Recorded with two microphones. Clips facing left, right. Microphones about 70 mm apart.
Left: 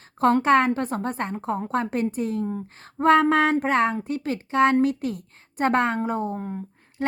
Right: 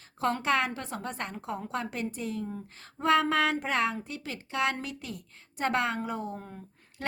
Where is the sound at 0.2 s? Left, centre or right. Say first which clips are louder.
Left 9 dB; left.